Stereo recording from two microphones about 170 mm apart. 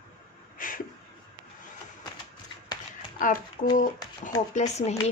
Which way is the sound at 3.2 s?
50° left (ahead or behind).